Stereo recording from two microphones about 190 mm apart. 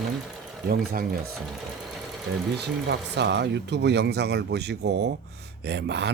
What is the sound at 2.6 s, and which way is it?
Speech, 60° right (ahead or behind).